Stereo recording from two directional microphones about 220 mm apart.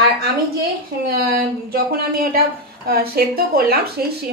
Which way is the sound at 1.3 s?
45° right (ahead or behind).